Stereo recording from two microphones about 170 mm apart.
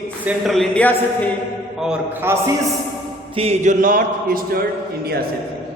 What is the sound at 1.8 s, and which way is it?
Speech, 10° right (ahead or behind).